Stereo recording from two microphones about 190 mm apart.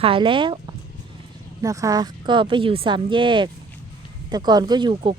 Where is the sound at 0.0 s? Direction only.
25° right (ahead or behind).